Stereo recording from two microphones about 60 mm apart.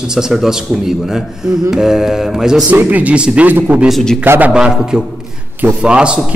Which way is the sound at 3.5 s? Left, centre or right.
Right.